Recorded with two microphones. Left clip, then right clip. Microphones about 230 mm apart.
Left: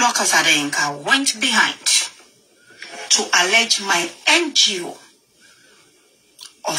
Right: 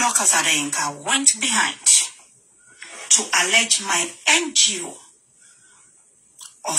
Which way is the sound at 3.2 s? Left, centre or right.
Left.